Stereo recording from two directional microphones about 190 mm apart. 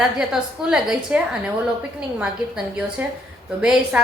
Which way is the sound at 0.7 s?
5° right (ahead or behind).